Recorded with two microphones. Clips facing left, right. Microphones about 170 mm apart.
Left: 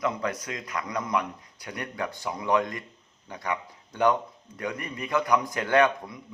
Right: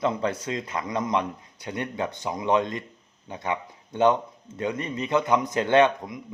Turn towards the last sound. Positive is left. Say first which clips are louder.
# right 3 dB
turn(degrees=-25)  # may be behind; listen again after turning